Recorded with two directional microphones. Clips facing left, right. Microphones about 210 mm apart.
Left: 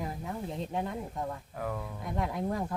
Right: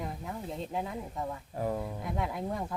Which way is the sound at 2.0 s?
Centre (ahead or behind).